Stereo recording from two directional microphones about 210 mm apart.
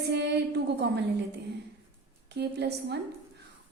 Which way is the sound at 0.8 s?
55° right (ahead or behind).